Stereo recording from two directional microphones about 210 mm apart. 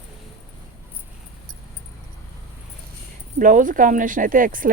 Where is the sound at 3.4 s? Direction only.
40° right (ahead or behind).